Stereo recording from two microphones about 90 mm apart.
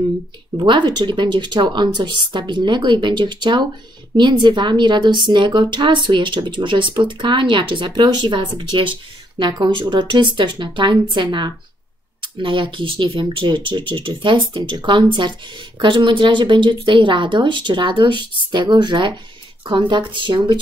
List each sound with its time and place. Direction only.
0.7 s speech: 60° right (ahead or behind)
8.0 s speech: 55° right (ahead or behind)
9.4 s speech: 55° right (ahead or behind)
12.2 s speech: 65° right (ahead or behind)